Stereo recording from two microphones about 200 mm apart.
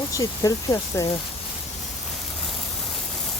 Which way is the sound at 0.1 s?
15° left (ahead or behind).